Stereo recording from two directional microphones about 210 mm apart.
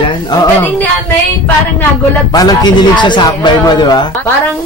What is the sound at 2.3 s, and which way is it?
A man's voice, 20° left (ahead or behind).